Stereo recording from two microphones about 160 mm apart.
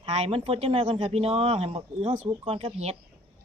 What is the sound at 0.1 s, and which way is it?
Speech, 40° right (ahead or behind).